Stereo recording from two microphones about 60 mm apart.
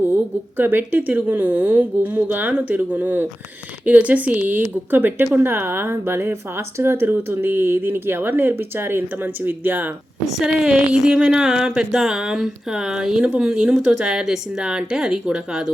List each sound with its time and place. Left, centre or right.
0.5 s speech: right
10.3 s speech: centre